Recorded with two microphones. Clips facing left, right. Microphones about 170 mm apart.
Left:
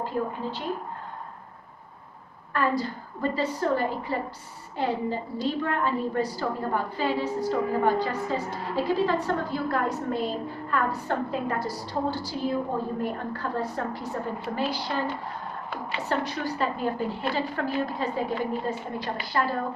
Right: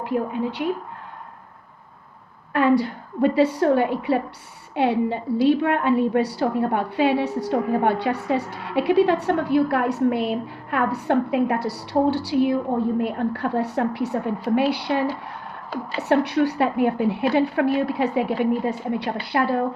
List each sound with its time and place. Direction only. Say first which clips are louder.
0.0 s a woman's voice: right 5 dB; 70° right (ahead or behind)
2.5 s a woman's voice: right 8 dB; 70° right (ahead or behind)